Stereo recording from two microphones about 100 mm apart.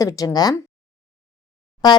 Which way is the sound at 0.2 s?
35° left (ahead or behind).